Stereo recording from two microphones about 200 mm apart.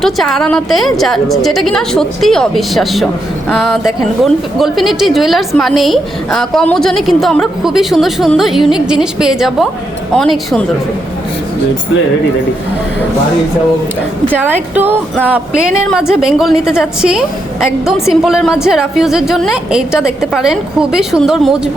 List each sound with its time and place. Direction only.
0.0 s a woman's voice: centre (ahead or behind)
14.4 s a woman's voice: 10° right (ahead or behind)
15.1 s a woman's voice: centre (ahead or behind)